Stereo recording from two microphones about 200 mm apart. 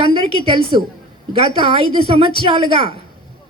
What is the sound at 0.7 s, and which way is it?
A man's voice, 25° right (ahead or behind).